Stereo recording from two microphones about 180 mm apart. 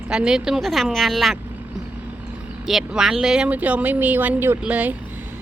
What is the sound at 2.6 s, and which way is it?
A woman's voice, centre (ahead or behind).